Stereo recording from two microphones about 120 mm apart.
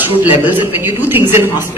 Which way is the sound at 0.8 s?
20° right (ahead or behind).